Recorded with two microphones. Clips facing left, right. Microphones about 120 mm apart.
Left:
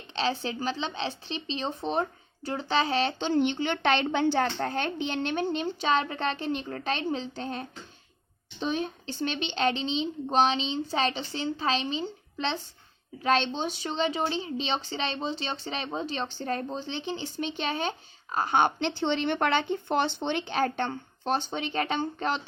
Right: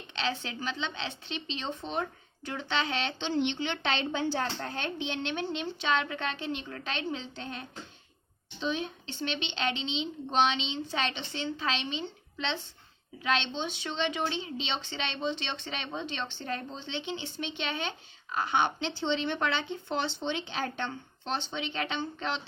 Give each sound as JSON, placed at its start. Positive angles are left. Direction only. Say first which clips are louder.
{"t": 0.1, "sound": "a woman's voice", "louder": "left 5 dB", "side_deg": 35}